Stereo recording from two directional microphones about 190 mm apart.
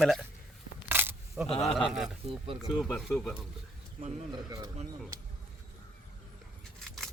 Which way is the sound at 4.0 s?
40° right (ahead or behind).